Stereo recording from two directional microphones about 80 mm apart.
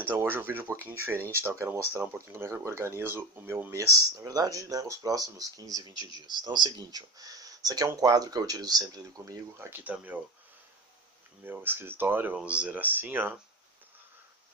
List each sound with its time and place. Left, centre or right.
0.2 s speech: right
3.7 s speech: right
6.2 s speech: right
9.6 s speech: right
11.4 s speech: right
12.4 s speech: centre